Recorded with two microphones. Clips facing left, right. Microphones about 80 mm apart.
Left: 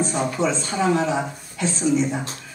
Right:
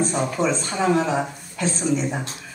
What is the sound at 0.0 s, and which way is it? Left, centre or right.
A man's voice, right.